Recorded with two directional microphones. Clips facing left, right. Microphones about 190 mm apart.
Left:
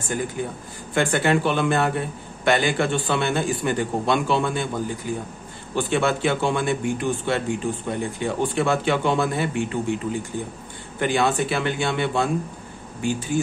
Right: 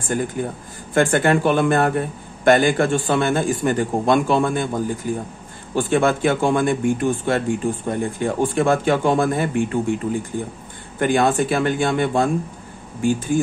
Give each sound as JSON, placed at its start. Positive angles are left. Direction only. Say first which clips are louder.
{"t": 0.4, "sound": "speech", "louder": "right 3 dB", "side_deg": -50}
{"t": 11.0, "sound": "speech", "louder": "right 4 dB", "side_deg": -50}